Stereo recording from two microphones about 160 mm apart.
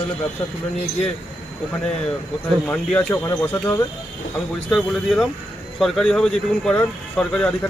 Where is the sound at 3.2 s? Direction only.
20° left (ahead or behind).